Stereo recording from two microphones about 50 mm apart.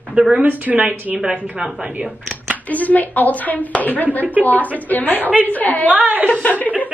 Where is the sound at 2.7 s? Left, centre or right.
Left.